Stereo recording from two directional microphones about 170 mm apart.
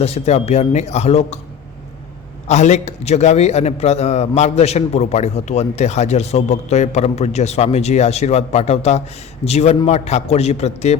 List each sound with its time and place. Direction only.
0.0 s a man's voice: 40° left (ahead or behind)
2.5 s a man's voice: 40° left (ahead or behind)